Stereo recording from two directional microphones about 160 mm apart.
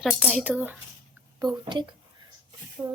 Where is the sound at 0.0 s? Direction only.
Centre (ahead or behind).